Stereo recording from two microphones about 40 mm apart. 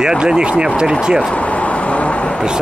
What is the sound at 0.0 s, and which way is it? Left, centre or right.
Speech, centre.